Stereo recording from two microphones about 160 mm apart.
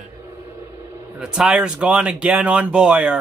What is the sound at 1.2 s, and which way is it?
Speech, 5° right (ahead or behind).